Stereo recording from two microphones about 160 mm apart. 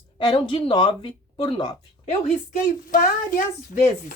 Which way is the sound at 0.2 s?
30° left (ahead or behind).